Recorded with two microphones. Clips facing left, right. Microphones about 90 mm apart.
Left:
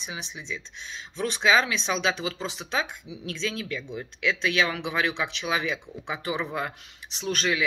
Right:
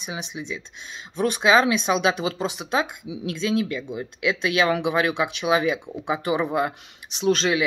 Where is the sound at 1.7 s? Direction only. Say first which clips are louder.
Right 6 dB; 15° right (ahead or behind).